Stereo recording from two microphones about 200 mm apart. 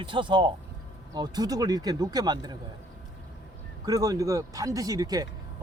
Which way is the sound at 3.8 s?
20° right (ahead or behind).